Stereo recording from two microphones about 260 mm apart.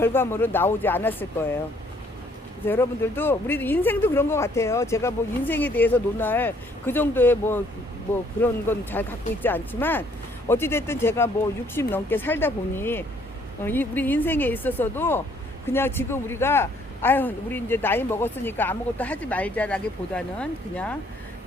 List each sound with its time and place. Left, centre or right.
0.0 s a man's voice: centre
2.6 s a man's voice: centre